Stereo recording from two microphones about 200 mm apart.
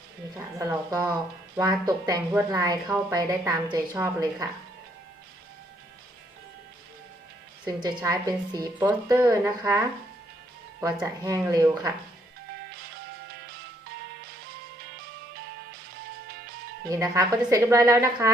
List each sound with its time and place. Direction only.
0.3 s a woman's voice: 15° right (ahead or behind)
7.8 s a woman's voice: 20° right (ahead or behind)
16.9 s a woman's voice: 15° right (ahead or behind)